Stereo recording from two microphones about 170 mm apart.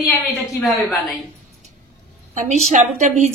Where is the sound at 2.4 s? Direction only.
45° right (ahead or behind).